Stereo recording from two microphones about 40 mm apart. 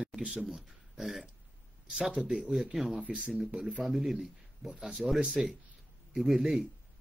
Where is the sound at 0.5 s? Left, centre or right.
Centre.